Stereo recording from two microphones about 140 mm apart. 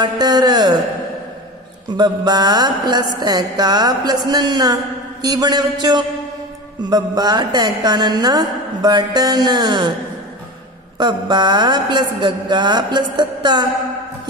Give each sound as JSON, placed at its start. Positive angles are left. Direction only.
{"t": 0.0, "sound": "speech", "side_deg": -30}
{"t": 2.0, "sound": "a woman's voice", "side_deg": -30}
{"t": 11.0, "sound": "a man's voice", "side_deg": -30}